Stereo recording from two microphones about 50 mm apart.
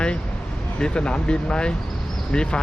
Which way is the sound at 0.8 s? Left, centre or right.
Centre.